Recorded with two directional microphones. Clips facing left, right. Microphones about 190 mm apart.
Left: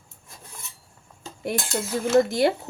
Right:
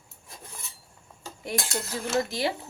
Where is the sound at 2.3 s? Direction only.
50° left (ahead or behind).